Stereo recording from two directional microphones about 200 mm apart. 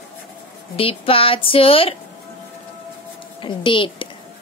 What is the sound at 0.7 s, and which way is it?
A woman's voice, 30° left (ahead or behind).